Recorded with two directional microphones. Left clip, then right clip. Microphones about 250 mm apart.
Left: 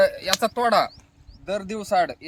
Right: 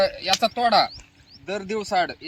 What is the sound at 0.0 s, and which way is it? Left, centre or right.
Speech, centre.